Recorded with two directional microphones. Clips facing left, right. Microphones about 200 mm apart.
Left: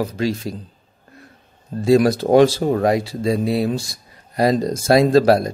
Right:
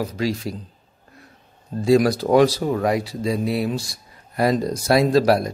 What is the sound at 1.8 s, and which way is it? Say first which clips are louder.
Speech: left 2 dB; 25° left (ahead or behind).